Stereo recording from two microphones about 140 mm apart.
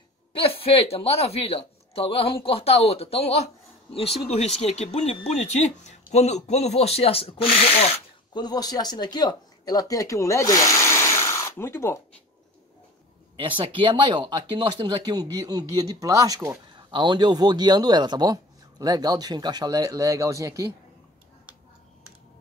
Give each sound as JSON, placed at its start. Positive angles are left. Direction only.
{"t": 0.4, "sound": "speech", "side_deg": 45}
{"t": 8.3, "sound": "speech", "side_deg": 30}
{"t": 13.4, "sound": "speech", "side_deg": -35}
{"t": 16.7, "sound": "speech", "side_deg": -35}